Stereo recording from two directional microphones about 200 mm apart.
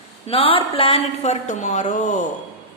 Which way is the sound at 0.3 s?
30° left (ahead or behind).